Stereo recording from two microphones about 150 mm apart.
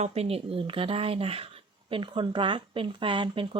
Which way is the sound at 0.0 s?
45° right (ahead or behind).